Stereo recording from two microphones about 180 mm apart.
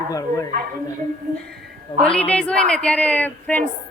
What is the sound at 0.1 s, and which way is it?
Speech, 20° left (ahead or behind).